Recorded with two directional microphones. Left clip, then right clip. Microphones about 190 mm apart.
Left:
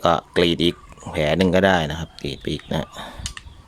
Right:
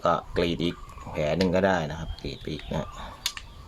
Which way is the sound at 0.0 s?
45° left (ahead or behind).